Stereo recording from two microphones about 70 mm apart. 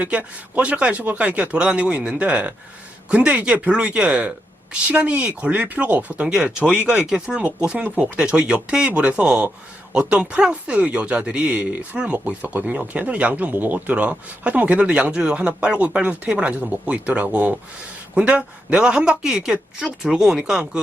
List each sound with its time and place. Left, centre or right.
0.0 s a man's voice: centre
6.2 s a man's voice: centre